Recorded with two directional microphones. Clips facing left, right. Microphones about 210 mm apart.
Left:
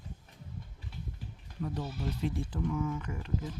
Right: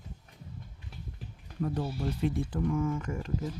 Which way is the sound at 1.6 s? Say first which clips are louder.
Right 5 dB; 50° right (ahead or behind).